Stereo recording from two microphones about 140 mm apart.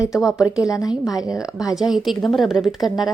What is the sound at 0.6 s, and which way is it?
Speech, 25° left (ahead or behind).